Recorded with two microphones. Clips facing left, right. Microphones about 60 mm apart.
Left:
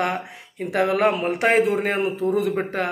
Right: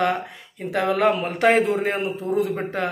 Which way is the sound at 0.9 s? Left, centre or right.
Left.